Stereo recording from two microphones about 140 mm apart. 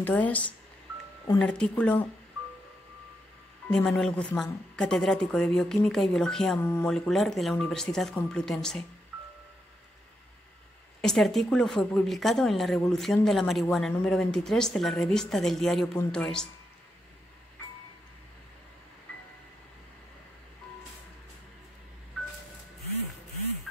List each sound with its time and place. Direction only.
0.0 s speech: 10° left (ahead or behind)
3.7 s speech: 5° left (ahead or behind)
11.0 s speech: centre (ahead or behind)